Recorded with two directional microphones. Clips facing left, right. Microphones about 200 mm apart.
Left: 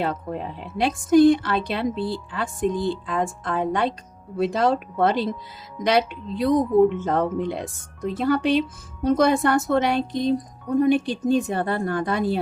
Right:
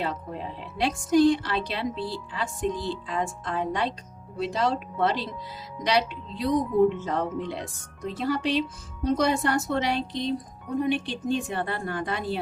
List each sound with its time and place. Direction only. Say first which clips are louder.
0.0 s speech: left 5 dB; 55° left (ahead or behind)